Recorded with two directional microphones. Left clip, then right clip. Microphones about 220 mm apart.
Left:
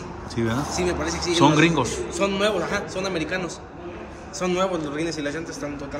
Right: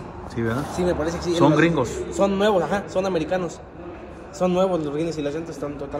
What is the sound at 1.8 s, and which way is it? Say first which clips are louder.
A man's voice: right 2 dB; 25° right (ahead or behind).